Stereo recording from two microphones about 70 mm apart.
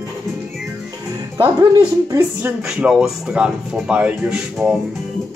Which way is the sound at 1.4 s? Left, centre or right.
Right.